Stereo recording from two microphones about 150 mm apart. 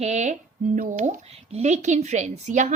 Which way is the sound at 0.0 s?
50° right (ahead or behind).